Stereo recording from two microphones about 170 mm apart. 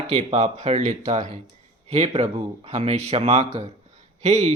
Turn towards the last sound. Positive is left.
turn(degrees=-40)  # may be behind; listen again after turning